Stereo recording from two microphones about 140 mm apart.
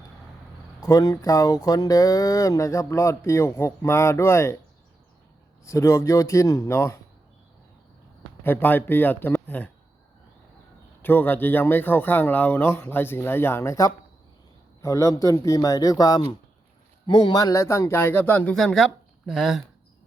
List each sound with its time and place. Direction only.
0.8 s speech: 25° left (ahead or behind)
5.6 s speech: 20° left (ahead or behind)
8.4 s a man's voice: 15° left (ahead or behind)
11.0 s a man's voice: 15° left (ahead or behind)